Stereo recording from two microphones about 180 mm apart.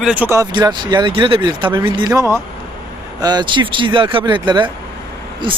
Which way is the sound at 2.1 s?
15° right (ahead or behind).